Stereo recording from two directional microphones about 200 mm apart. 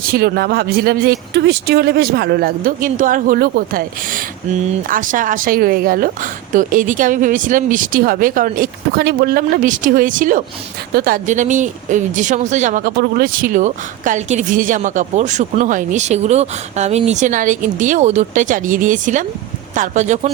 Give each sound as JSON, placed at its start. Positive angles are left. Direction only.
{"t": 0.1, "sound": "speech", "side_deg": -50}